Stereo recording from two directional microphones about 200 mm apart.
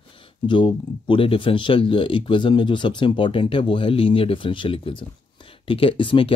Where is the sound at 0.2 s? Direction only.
25° left (ahead or behind).